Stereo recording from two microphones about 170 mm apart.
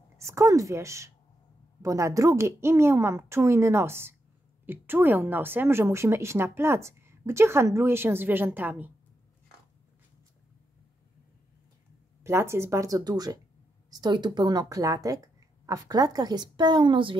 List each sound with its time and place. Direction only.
0.3 s a woman's voice: 20° right (ahead or behind)
12.2 s a woman's voice: 15° right (ahead or behind)